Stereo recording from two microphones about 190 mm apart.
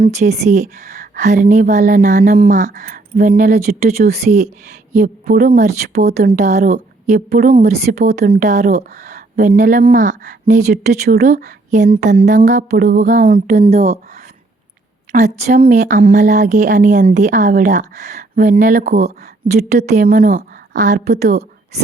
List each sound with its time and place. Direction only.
0.0 s speech: 35° right (ahead or behind)
15.1 s speech: 40° right (ahead or behind)